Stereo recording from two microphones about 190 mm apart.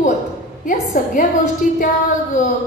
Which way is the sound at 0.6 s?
45° left (ahead or behind).